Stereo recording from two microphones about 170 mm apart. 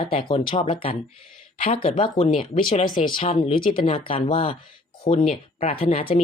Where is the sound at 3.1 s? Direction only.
30° left (ahead or behind).